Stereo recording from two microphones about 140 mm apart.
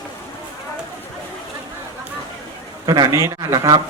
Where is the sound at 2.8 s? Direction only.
25° right (ahead or behind).